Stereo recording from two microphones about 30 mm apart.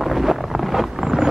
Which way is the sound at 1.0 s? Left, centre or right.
Centre.